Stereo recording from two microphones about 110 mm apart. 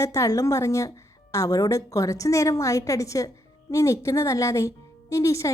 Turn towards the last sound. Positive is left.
turn(degrees=30)  # may be behind; listen again after turning